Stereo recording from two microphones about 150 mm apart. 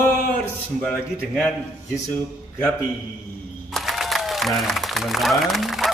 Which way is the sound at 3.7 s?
Centre (ahead or behind).